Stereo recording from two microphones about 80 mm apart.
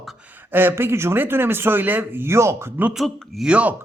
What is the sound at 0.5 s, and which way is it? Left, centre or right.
Speech, right.